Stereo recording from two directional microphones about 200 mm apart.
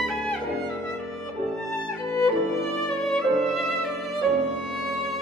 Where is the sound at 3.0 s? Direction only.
Centre (ahead or behind).